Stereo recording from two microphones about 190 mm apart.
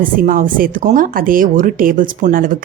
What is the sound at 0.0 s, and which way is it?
Speech, 45° right (ahead or behind).